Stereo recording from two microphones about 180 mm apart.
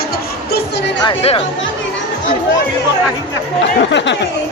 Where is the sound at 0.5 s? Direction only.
70° left (ahead or behind).